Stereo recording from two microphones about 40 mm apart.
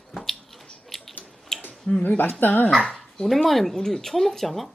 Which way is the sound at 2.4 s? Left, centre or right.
Left.